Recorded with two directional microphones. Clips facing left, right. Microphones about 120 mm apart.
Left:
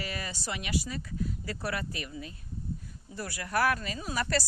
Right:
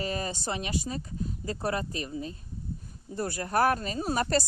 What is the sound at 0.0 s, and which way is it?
Speech, 30° right (ahead or behind).